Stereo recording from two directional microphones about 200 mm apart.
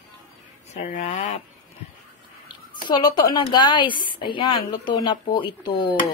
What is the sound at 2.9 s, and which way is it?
A woman's voice, 20° left (ahead or behind).